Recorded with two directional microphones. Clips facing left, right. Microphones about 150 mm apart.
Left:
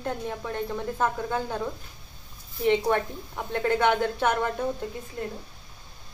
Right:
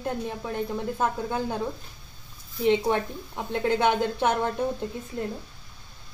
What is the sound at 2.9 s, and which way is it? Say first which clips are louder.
A woman's voice: left 1 dB; 15° right (ahead or behind).